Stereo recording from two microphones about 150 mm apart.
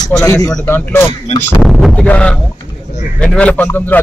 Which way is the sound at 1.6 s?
Centre (ahead or behind).